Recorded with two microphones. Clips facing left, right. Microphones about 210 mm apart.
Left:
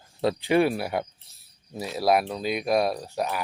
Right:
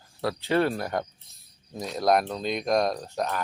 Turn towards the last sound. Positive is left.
turn(degrees=10)  # may be behind; listen again after turning